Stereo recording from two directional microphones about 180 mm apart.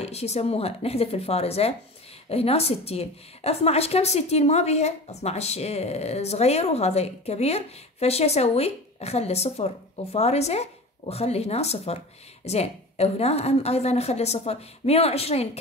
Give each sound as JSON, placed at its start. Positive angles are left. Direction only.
{"t": 0.0, "sound": "a woman's voice", "side_deg": 35}